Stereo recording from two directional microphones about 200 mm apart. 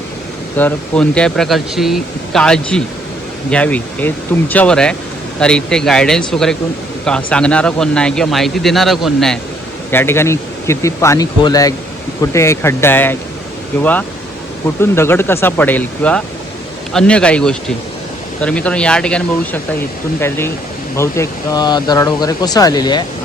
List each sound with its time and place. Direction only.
0.5 s speech: 5° left (ahead or behind)
9.9 s speech: 10° left (ahead or behind)
14.8 s speech: 10° left (ahead or behind)